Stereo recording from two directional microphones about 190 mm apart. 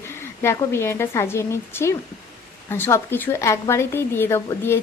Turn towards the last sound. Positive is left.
turn(degrees=15)  # may be behind; listen again after turning